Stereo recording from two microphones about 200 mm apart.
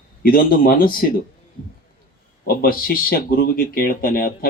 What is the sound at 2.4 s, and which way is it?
Speech, 45° left (ahead or behind).